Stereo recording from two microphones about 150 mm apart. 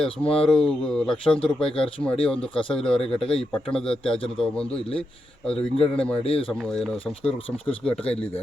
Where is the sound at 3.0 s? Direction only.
40° left (ahead or behind).